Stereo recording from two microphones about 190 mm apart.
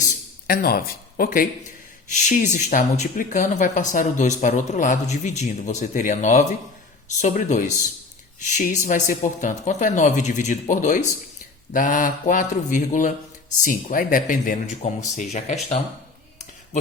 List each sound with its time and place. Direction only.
0.4 s speech: 55° left (ahead or behind); by 15.5 s 40° left (ahead or behind)